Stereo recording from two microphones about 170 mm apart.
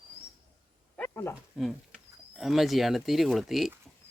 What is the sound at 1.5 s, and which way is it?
Speech, centre (ahead or behind).